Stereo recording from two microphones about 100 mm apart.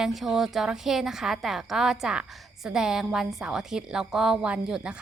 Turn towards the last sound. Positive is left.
turn(degrees=-10)  # may be behind; listen again after turning